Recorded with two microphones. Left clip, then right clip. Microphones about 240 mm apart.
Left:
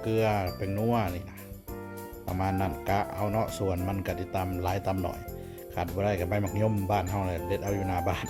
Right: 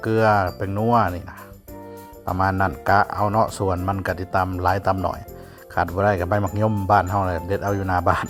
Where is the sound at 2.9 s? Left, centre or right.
Centre.